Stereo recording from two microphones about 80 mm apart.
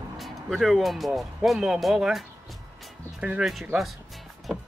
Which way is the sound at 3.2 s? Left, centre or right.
Centre.